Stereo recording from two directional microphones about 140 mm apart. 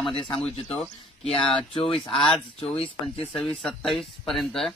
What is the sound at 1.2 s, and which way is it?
Speech, 40° left (ahead or behind).